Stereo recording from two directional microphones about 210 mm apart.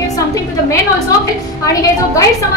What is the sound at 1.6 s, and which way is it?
Speech, 15° left (ahead or behind).